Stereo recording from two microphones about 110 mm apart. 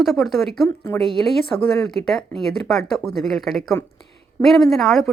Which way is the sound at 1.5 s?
20° left (ahead or behind).